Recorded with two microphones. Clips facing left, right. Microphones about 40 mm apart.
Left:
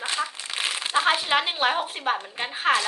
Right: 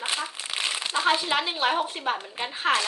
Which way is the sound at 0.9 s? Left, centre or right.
Left.